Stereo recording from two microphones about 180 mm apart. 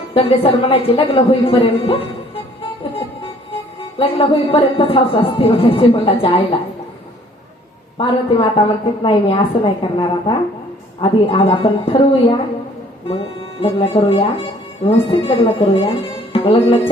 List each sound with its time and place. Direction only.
0.1 s speech: 30° left (ahead or behind)
3.8 s speech: 30° left (ahead or behind)
7.9 s a woman's voice: 30° left (ahead or behind)
13.6 s speech: 30° left (ahead or behind)